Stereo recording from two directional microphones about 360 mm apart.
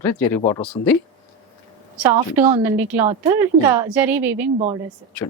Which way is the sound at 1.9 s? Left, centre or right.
Centre.